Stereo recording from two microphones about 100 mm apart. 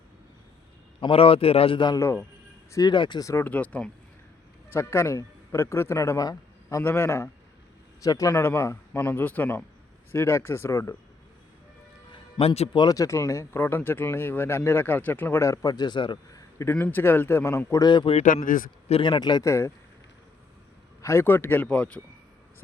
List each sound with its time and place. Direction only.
1.0 s a man's voice: 70° left (ahead or behind); by 3.2 s 50° left (ahead or behind)
3.4 s speech: 15° left (ahead or behind)
4.7 s a man's voice: 25° left (ahead or behind)
12.4 s speech: 85° left
12.7 s speech: 45° left (ahead or behind)
16.3 s a sound: 30° left (ahead or behind)
16.8 s speech: 20° left (ahead or behind)
17.8 s speech: 50° left (ahead or behind)
19.5 s speech: 30° left (ahead or behind)
21.0 s speech: 25° left (ahead or behind)